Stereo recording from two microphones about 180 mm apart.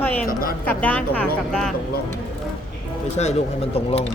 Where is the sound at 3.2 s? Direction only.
35° left (ahead or behind).